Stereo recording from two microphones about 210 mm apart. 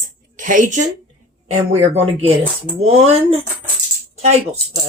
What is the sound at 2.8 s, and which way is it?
Speech, 30° right (ahead or behind).